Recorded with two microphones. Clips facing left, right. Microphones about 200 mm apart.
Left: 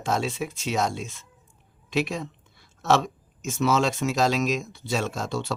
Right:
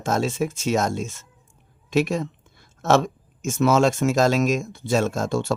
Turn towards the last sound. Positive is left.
turn(degrees=-50)  # may be behind; listen again after turning